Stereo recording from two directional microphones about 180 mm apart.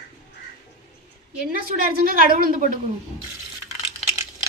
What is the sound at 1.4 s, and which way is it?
A woman's voice, 55° right (ahead or behind).